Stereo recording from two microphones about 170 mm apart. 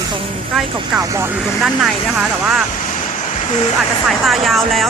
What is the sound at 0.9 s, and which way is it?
Speech, 20° right (ahead or behind).